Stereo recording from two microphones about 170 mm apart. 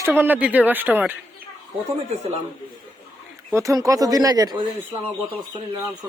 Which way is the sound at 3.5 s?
20° right (ahead or behind).